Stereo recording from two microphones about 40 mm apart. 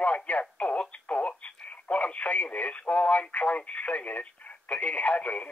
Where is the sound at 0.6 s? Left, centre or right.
Left.